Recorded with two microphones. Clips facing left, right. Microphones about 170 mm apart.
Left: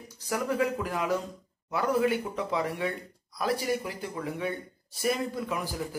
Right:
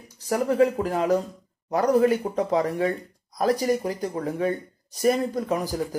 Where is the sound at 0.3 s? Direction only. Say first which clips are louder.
Right 7 dB; 40° right (ahead or behind).